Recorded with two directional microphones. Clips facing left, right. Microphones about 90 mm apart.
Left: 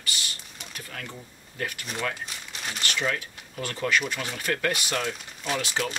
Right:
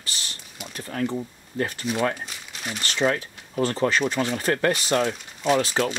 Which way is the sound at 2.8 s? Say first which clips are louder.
Right 6 dB; 35° right (ahead or behind).